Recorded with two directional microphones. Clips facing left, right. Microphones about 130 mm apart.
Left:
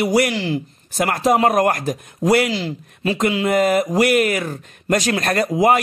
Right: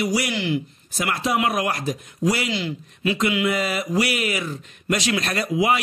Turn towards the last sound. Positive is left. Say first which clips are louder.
# left 5 dB
turn(degrees=45)  # may be behind; listen again after turning